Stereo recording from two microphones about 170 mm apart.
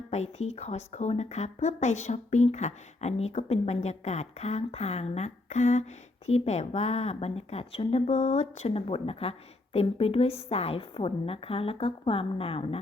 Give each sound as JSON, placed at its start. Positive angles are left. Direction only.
{"t": 0.1, "sound": "speech", "side_deg": 40}